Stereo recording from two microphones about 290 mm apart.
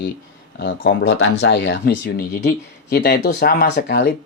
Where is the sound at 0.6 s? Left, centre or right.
Left.